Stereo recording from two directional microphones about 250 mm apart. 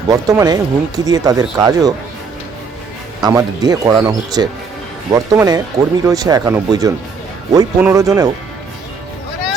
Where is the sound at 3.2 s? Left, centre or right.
Centre.